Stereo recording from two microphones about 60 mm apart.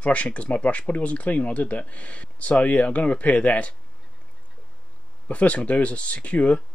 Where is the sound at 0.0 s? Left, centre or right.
Left.